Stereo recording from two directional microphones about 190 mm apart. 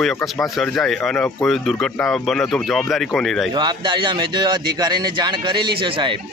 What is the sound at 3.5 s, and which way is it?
Speech, 25° right (ahead or behind).